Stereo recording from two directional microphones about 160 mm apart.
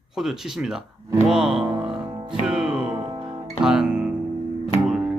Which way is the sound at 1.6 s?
30° right (ahead or behind).